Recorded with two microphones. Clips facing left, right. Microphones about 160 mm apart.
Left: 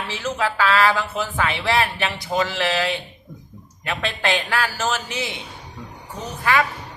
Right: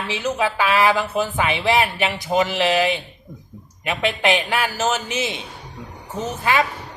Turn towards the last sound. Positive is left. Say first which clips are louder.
# right 1 dB
turn(degrees=-20)  # may be behind; listen again after turning